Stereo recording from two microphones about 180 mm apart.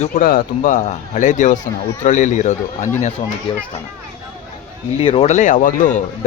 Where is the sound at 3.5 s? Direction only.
30° left (ahead or behind).